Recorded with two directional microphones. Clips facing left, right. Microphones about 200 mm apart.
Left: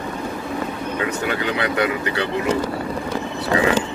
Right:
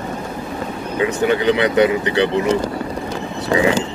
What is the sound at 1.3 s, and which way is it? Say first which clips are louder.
Speech: right 6 dB; 25° right (ahead or behind).